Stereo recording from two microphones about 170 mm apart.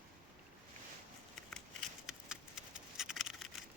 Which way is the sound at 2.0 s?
5° right (ahead or behind).